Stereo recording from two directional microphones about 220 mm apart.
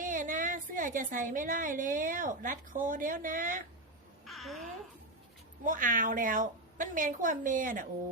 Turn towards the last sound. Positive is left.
turn(degrees=-35)  # may be behind; listen again after turning